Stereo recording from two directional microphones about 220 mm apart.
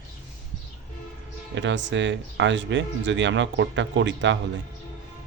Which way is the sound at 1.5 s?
55° right (ahead or behind).